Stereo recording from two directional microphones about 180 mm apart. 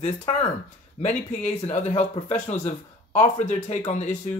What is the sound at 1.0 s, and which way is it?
Speech, 40° left (ahead or behind).